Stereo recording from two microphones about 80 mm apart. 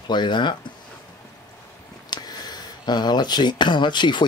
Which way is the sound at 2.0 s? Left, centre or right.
Left.